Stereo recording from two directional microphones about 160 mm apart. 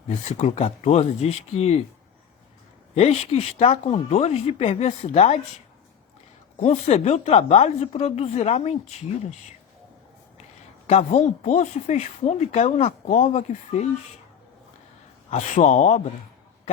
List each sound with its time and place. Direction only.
0.3 s speech: 45° left (ahead or behind)
2.9 s speech: 40° left (ahead or behind)
6.6 s speech: 45° left (ahead or behind)
10.8 s speech: 45° left (ahead or behind)
15.3 s speech: 45° left (ahead or behind)